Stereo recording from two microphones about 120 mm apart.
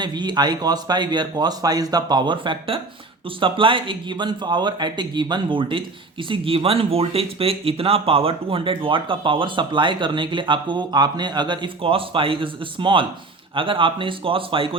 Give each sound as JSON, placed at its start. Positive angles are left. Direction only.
{"t": 0.0, "sound": "speech", "side_deg": -40}